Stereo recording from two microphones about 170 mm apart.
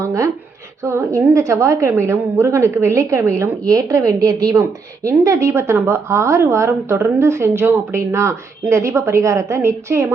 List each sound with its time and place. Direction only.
0.0 s a woman's voice: 15° right (ahead or behind)